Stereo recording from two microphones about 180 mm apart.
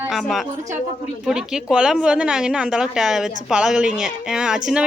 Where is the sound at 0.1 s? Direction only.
Centre (ahead or behind).